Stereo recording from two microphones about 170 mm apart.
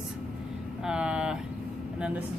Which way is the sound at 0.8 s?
5° right (ahead or behind).